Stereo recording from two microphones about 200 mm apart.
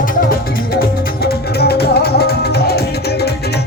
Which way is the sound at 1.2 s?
50° left (ahead or behind).